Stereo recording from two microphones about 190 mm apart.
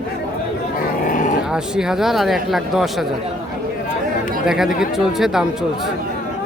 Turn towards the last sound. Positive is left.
turn(degrees=0)  # may be behind; listen again after turning